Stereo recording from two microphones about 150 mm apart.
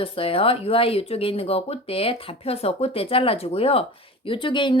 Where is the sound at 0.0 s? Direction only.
40° left (ahead or behind).